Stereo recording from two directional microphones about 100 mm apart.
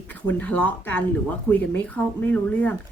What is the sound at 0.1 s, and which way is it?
Speech, 15° left (ahead or behind).